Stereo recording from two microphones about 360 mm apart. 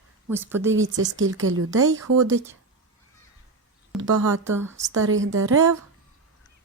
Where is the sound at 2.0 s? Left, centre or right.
Right.